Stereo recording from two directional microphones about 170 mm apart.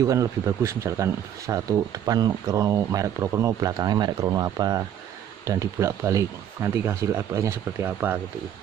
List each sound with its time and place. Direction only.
0.0 s speech: 20° right (ahead or behind)